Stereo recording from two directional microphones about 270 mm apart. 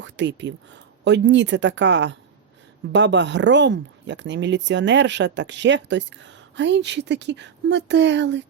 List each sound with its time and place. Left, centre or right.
0.0 s speech: right